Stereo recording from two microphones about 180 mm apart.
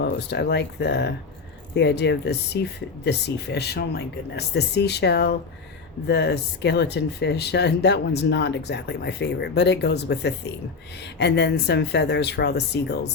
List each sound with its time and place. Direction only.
0.0 s speech: 65° left (ahead or behind)